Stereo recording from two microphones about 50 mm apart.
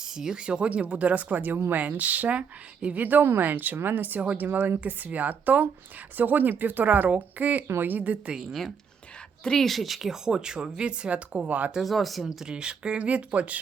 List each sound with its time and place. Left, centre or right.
0.0 s speech: centre; by 8.2 s right
8.4 s speech: centre
9.4 s speech: centre
9.6 s speech: centre; by 11.7 s right
11.8 s speech: centre
12.5 s speech: centre